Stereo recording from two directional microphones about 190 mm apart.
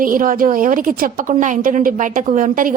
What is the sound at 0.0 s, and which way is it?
A woman's voice, 45° right (ahead or behind).